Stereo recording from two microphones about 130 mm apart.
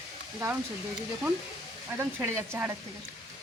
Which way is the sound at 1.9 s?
15° right (ahead or behind).